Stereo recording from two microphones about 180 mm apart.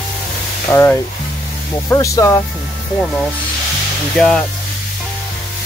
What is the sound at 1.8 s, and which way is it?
Speech, 15° left (ahead or behind).